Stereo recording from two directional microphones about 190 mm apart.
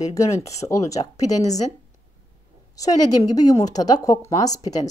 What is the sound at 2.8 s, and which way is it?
Speech, 20° left (ahead or behind).